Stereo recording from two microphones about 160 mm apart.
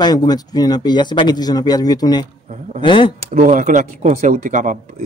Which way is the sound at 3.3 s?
55° right (ahead or behind).